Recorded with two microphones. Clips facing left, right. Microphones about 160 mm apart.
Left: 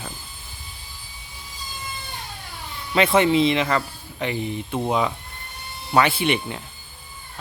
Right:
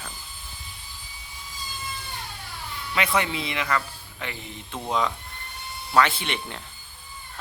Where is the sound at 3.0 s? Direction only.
25° left (ahead or behind).